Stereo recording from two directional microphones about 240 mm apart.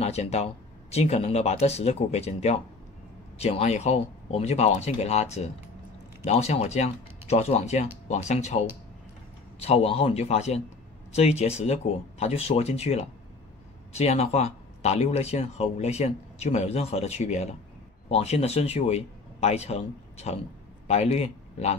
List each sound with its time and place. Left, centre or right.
0.0 s a man's voice: left